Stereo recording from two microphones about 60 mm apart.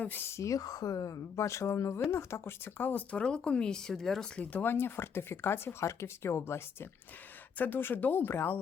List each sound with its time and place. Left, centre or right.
0.0 s speech: left
0.3 s speech: left
1.4 s speech: left
2.8 s speech: left
3.2 s speech: centre
4.6 s speech: left
7.6 s speech: left